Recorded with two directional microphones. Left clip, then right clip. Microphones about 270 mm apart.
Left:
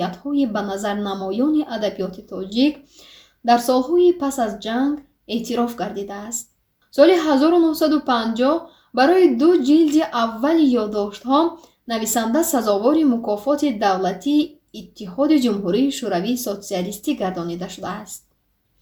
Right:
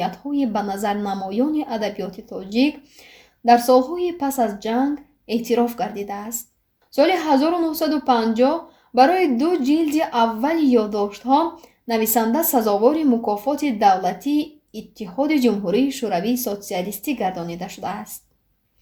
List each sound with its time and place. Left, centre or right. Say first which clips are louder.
0.0 s a woman's voice: left 1 dB; right
3.5 s a woman's voice: right 2 dB; right